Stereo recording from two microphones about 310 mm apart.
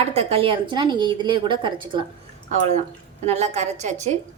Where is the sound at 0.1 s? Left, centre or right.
Centre.